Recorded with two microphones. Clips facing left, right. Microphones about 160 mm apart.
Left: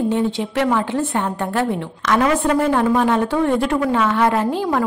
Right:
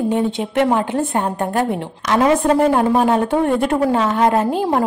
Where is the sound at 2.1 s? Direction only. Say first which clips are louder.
Right 2 dB; 30° right (ahead or behind).